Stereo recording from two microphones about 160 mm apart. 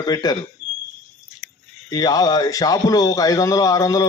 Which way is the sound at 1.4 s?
Centre (ahead or behind).